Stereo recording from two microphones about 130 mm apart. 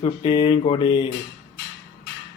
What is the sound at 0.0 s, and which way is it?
Speech, 45° left (ahead or behind).